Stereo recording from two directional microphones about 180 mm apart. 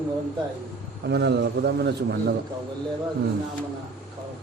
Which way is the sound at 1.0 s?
65° right (ahead or behind).